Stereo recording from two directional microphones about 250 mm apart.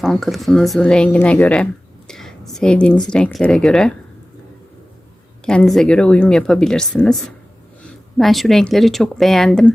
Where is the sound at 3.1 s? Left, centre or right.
Centre.